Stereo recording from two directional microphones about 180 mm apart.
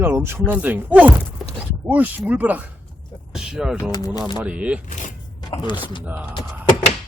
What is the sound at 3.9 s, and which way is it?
Speech, 20° left (ahead or behind).